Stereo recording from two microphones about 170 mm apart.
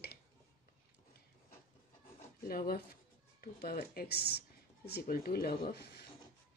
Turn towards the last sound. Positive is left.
turn(degrees=65)  # may be behind; listen again after turning